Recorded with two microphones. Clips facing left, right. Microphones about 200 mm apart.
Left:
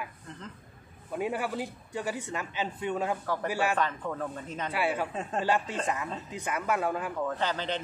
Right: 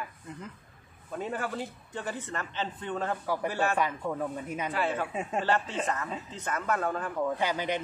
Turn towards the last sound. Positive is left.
turn(degrees=-10)  # may be behind; listen again after turning